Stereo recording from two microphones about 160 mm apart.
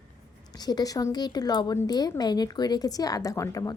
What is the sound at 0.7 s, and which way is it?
A woman's voice, 25° left (ahead or behind).